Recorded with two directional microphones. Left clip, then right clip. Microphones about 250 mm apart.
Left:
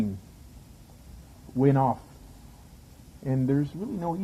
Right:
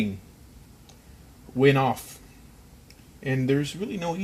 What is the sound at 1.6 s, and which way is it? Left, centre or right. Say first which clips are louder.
Speech: right 3 dB; right.